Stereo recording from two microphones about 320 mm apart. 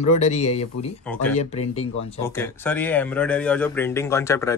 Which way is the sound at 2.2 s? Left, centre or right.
Centre.